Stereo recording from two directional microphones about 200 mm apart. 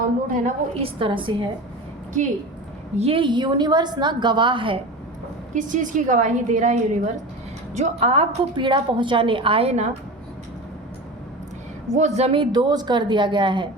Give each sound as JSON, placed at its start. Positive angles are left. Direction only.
{"t": 0.3, "sound": "a woman's voice", "side_deg": -35}
{"t": 0.9, "sound": "a woman's voice", "side_deg": -25}
{"t": 3.0, "sound": "a woman's voice", "side_deg": -25}
{"t": 5.5, "sound": "a woman's voice", "side_deg": -40}
{"t": 11.9, "sound": "a woman's voice", "side_deg": -35}